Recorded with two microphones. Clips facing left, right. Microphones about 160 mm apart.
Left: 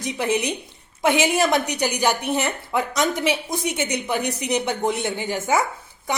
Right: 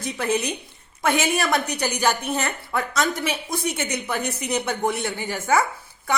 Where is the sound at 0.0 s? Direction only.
15° left (ahead or behind).